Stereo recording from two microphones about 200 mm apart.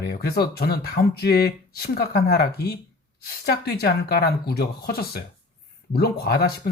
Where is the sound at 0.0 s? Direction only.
50° left (ahead or behind).